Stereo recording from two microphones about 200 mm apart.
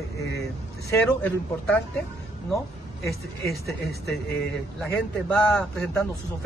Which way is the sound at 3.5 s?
55° left (ahead or behind).